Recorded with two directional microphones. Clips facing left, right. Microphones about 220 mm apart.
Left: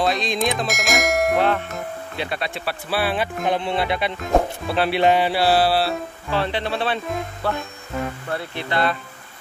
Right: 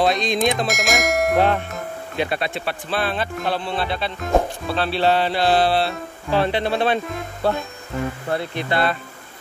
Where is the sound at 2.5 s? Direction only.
5° left (ahead or behind).